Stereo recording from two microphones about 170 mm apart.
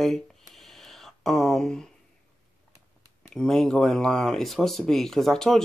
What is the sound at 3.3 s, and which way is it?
Speech, 5° left (ahead or behind).